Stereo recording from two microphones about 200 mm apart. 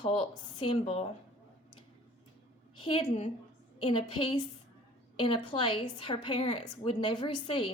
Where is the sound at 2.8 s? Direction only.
25° left (ahead or behind).